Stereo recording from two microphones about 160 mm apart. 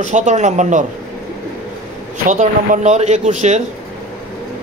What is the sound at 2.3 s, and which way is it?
Speech, 50° right (ahead or behind).